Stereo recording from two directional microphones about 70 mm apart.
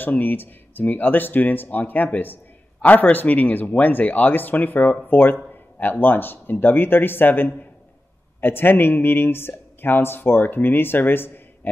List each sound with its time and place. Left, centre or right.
0.0 s speech: left